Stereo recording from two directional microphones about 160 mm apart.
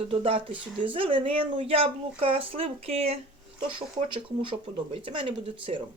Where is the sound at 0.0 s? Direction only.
35° right (ahead or behind).